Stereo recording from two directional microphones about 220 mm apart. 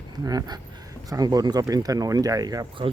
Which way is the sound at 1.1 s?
15° right (ahead or behind).